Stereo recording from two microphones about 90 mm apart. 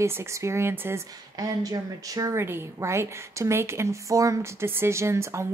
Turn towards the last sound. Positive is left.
turn(degrees=-30)  # may be behind; listen again after turning